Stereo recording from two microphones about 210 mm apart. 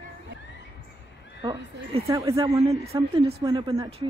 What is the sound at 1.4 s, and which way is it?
Speech, 20° right (ahead or behind).